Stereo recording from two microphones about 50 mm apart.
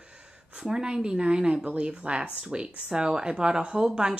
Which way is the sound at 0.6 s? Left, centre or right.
Centre.